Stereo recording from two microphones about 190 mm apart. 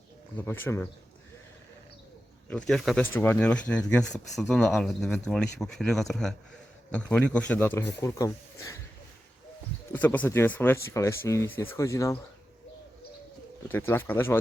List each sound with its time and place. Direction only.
0.3 s a man's voice: 10° left (ahead or behind)
2.5 s a man's voice: 5° left (ahead or behind)
9.9 s a man's voice: 10° left (ahead or behind)
13.7 s a man's voice: 10° left (ahead or behind)